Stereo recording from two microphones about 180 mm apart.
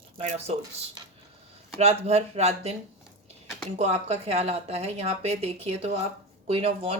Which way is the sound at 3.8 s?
35° right (ahead or behind).